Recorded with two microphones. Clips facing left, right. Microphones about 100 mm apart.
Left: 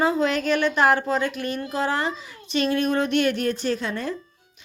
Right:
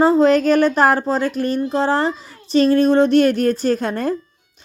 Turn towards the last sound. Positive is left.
turn(degrees=-45)  # may be behind; listen again after turning